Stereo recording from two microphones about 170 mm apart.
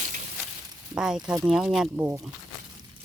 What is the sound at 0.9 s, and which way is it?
Speech, 5° right (ahead or behind).